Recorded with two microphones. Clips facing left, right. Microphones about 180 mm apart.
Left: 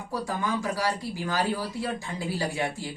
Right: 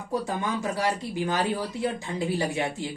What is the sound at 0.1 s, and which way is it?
Speech, 25° right (ahead or behind).